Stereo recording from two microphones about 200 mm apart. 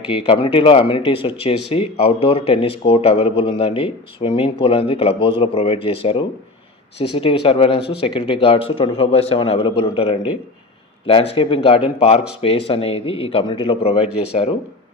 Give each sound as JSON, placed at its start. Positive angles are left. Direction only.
{"t": 0.3, "sound": "speech", "side_deg": 25}